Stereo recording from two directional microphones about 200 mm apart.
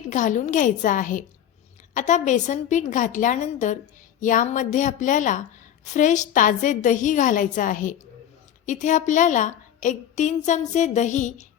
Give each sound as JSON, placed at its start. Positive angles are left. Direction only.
{"t": 0.1, "sound": "a woman's voice", "side_deg": 40}